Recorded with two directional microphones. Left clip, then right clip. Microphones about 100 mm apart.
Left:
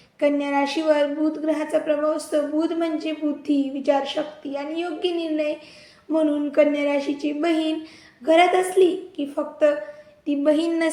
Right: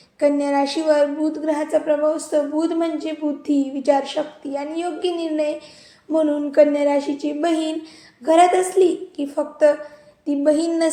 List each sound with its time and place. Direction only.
0.2 s a woman's voice: 20° right (ahead or behind); by 9.7 s 35° right (ahead or behind)
10.2 s speech: 20° right (ahead or behind)